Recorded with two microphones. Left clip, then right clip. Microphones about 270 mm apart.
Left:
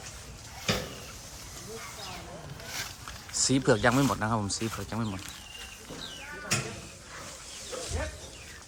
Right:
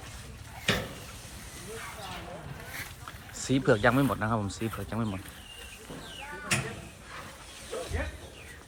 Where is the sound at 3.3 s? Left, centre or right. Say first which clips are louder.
Left 1 dB; centre.